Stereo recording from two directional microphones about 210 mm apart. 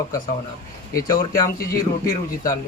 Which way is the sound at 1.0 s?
15° left (ahead or behind).